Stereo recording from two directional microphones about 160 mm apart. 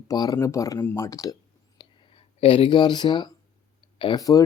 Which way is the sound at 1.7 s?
35° left (ahead or behind).